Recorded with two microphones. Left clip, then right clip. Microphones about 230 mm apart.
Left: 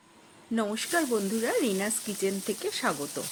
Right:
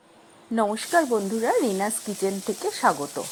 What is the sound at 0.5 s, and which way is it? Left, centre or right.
Speech, centre.